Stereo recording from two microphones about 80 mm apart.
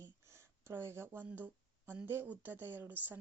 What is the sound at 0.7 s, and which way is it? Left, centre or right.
Speech, right.